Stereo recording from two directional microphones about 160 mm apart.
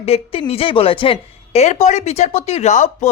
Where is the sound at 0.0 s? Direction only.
40° left (ahead or behind).